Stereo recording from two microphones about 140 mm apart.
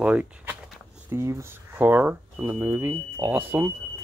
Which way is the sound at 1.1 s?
20° right (ahead or behind).